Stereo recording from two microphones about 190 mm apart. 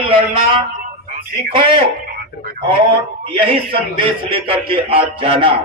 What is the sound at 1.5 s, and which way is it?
Speech, 30° right (ahead or behind).